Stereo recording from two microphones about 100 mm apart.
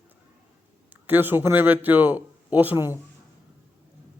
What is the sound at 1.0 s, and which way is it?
A man's voice, 20° right (ahead or behind).